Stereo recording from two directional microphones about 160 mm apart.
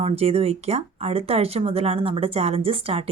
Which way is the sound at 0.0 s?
40° right (ahead or behind).